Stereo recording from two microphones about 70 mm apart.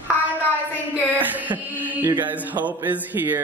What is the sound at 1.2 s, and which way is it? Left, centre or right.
Music, right.